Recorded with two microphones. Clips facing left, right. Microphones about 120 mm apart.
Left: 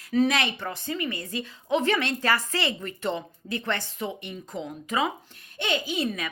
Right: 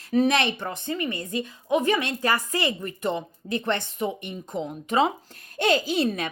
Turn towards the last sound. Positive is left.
turn(degrees=-30)  # may be behind; listen again after turning